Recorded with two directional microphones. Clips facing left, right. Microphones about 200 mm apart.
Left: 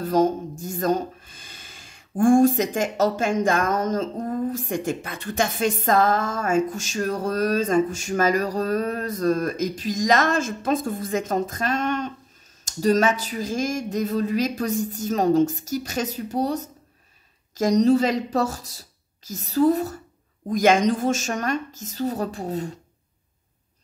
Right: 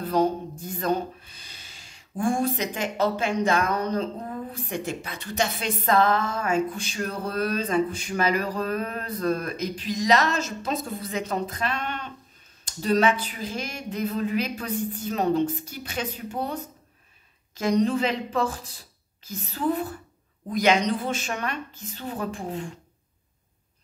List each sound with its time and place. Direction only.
0.0 s a woman's voice: 45° left (ahead or behind)